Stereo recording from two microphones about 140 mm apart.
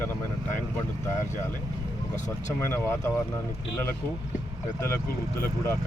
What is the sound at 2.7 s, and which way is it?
Speech, 15° left (ahead or behind).